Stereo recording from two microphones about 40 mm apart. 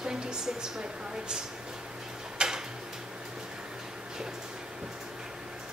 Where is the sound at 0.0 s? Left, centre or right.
Centre.